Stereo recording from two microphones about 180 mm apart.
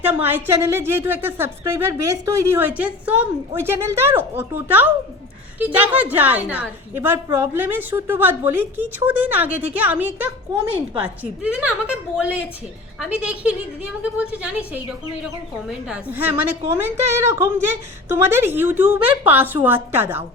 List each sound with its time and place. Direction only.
0.0 s speech: 10° right (ahead or behind)
10.5 s a woman's voice: 20° right (ahead or behind)
10.9 s speech: 10° right (ahead or behind)